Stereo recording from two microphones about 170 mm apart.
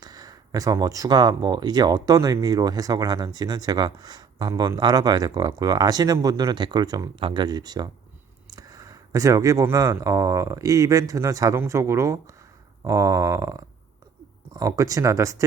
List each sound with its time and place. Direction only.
0.0 s speech: 25° right (ahead or behind)